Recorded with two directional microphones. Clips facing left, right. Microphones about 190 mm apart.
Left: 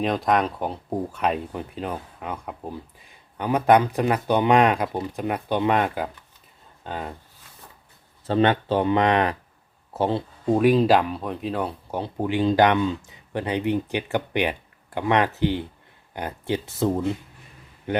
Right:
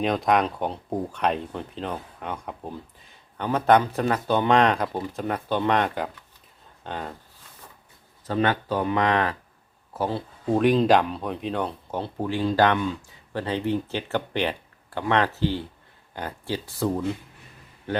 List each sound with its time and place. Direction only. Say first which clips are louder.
0.0 s speech: even; centre (ahead or behind)
8.3 s speech: left 4 dB; 25° left (ahead or behind)
10.5 s a man's voice: left 1 dB; 5° left (ahead or behind)